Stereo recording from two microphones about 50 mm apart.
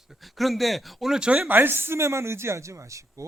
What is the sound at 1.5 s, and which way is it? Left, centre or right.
A man's voice, right.